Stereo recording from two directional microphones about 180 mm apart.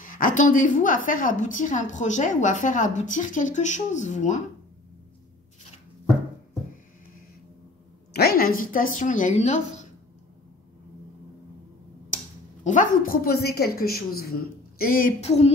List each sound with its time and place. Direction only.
0.0 s a woman's voice: 50° left (ahead or behind)
8.1 s a woman's voice: 60° left (ahead or behind); by 9.8 s 40° left (ahead or behind)
12.6 s a woman's voice: 50° left (ahead or behind)